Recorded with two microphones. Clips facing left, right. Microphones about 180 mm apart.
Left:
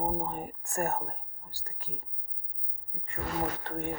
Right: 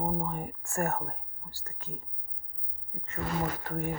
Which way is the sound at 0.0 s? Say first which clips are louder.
Even; 30° left (ahead or behind).